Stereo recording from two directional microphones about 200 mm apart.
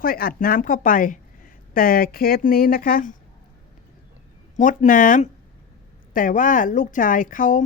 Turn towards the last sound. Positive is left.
turn(degrees=40)  # may be behind; listen again after turning